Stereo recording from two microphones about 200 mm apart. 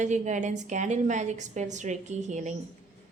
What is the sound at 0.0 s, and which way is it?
A woman's voice, 35° right (ahead or behind).